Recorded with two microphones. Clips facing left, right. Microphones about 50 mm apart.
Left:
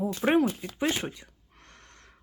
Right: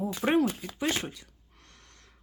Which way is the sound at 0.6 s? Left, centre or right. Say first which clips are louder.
Left 2 dB; left.